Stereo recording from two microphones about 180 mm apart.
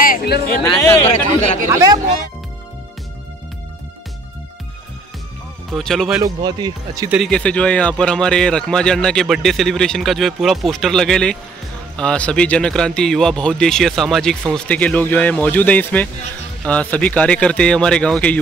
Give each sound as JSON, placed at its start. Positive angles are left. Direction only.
{"t": 0.0, "sound": "music", "side_deg": 55}
{"t": 0.7, "sound": "speech", "side_deg": 20}
{"t": 1.7, "sound": "speech", "side_deg": -15}
{"t": 5.7, "sound": "speech", "side_deg": 0}
{"t": 6.2, "sound": "speech", "side_deg": -20}
{"t": 7.1, "sound": "speech", "side_deg": 0}